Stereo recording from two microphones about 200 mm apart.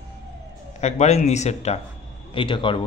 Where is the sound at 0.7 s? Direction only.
35° left (ahead or behind).